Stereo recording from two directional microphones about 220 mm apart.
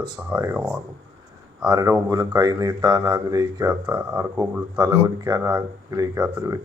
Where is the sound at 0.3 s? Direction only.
5° right (ahead or behind).